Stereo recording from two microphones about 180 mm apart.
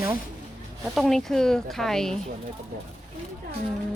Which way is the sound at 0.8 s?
Centre (ahead or behind).